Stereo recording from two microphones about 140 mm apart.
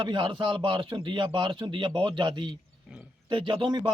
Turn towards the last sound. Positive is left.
turn(degrees=-30)  # may be behind; listen again after turning